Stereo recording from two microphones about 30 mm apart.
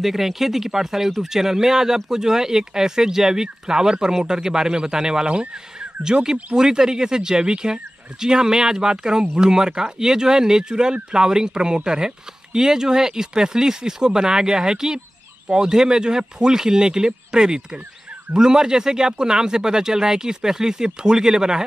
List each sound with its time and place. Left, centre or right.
0.0 s speech: centre